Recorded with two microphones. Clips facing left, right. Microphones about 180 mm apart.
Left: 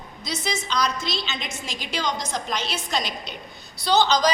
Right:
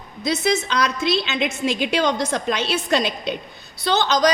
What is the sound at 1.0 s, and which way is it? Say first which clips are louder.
A woman's voice: right 9 dB; 60° right (ahead or behind).